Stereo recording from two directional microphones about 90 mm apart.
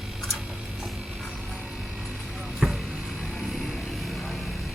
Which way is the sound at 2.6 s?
5° right (ahead or behind).